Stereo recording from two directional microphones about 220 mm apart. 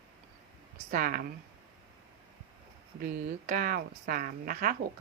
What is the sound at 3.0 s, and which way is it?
Speech, 40° right (ahead or behind).